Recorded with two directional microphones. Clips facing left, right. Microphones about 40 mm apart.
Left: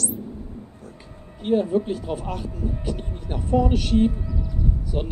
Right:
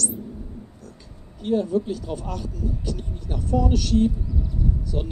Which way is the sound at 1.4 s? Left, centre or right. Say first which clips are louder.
Left 2 dB; left.